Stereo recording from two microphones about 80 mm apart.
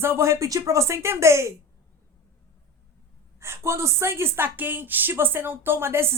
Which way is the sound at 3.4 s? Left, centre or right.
Right.